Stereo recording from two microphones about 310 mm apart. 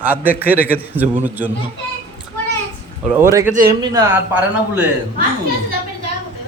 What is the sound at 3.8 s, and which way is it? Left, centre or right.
A man's voice, centre.